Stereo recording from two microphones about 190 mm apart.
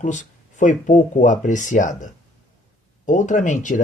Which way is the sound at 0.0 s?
40° left (ahead or behind).